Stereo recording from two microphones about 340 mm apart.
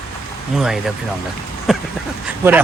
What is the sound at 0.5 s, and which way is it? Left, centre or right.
Speech, centre.